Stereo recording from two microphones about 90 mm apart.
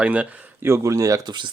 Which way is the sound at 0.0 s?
15° right (ahead or behind).